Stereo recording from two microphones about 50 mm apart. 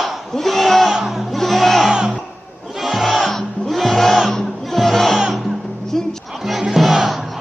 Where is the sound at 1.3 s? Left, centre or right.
Centre.